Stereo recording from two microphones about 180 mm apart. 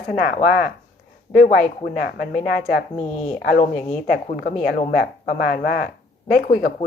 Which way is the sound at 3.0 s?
40° left (ahead or behind).